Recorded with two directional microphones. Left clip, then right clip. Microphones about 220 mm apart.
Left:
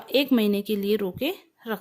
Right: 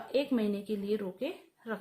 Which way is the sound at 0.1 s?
45° left (ahead or behind).